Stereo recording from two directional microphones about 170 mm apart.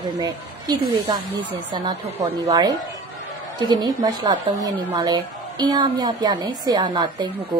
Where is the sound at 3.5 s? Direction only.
25° right (ahead or behind).